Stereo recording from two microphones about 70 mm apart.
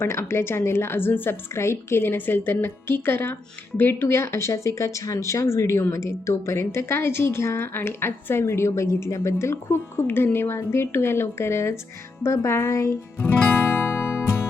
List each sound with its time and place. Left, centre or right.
0.0 s speech: left
12.2 s music: left